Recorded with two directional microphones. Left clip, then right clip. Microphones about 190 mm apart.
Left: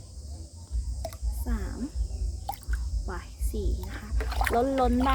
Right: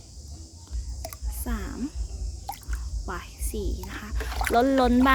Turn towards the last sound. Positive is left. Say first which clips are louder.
# right 4 dB
turn(degrees=-65)  # may be behind; listen again after turning